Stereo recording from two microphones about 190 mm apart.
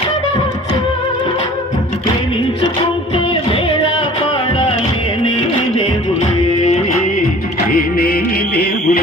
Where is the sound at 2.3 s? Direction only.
30° left (ahead or behind).